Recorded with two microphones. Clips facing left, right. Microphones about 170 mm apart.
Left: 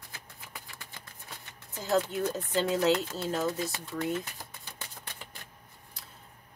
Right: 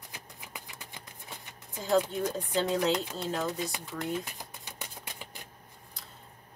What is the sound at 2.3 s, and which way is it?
Speech, centre (ahead or behind).